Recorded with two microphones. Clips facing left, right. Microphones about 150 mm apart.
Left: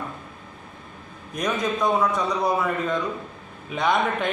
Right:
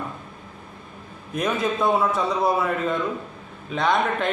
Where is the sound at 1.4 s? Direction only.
5° right (ahead or behind).